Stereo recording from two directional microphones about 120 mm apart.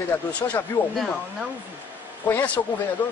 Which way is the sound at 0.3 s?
15° left (ahead or behind).